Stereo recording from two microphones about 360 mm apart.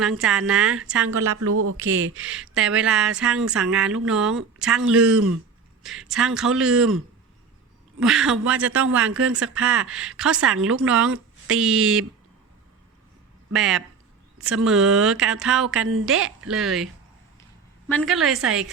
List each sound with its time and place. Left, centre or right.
0.0 s a woman's voice: centre
1.0 s speech: right
2.3 s a woman's voice: centre
10.9 s speech: right
11.4 s a woman's voice: centre
13.5 s a woman's voice: centre